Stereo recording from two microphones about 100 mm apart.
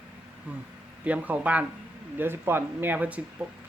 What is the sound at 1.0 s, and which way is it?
Speech, 15° right (ahead or behind).